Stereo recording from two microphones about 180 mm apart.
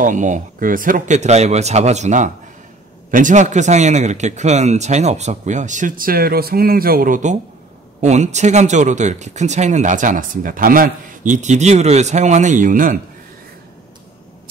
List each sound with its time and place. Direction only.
0.0 s speech: 45° right (ahead or behind)